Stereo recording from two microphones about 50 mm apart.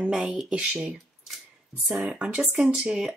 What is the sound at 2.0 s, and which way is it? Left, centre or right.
Speech, right.